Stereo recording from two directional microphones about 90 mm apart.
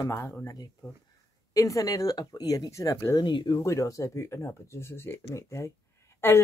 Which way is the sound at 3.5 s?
35° left (ahead or behind).